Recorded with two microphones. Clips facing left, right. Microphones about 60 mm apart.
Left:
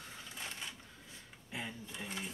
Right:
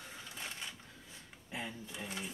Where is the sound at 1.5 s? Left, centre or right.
Centre.